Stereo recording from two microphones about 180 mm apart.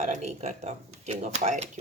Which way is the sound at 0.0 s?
40° right (ahead or behind).